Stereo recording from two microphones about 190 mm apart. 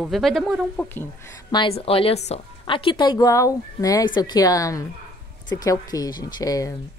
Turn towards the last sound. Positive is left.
turn(degrees=20)  # may be behind; listen again after turning